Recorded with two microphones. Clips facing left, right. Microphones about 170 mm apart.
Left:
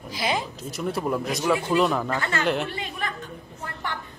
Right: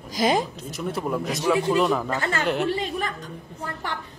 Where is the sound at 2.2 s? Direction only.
40° right (ahead or behind).